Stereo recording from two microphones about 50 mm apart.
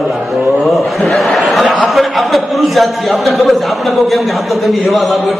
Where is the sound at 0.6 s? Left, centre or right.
Centre.